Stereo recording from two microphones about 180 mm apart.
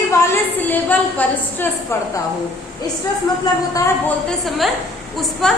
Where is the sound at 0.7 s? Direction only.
10° left (ahead or behind).